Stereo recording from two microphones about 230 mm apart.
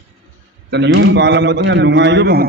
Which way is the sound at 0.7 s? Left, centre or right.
Right.